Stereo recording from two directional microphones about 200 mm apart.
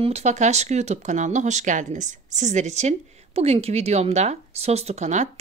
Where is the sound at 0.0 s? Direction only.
35° right (ahead or behind).